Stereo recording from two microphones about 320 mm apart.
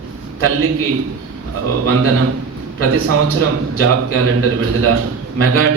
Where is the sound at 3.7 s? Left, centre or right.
Right.